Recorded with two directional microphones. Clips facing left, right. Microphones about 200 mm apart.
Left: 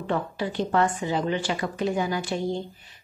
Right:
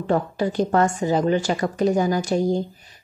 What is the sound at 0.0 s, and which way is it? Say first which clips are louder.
A woman's voice: right 6 dB; 40° right (ahead or behind).